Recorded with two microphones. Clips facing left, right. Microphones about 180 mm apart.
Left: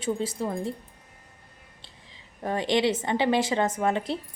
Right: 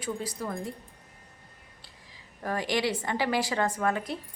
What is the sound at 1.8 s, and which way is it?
A woman's voice, 25° left (ahead or behind).